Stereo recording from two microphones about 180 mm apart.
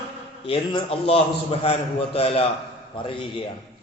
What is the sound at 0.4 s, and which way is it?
A man's voice, 30° left (ahead or behind).